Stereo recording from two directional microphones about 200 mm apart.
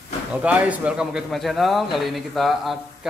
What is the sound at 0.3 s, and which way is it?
A man's voice, 5° right (ahead or behind).